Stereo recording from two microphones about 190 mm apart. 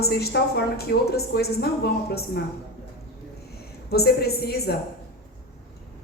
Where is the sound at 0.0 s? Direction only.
55° left (ahead or behind).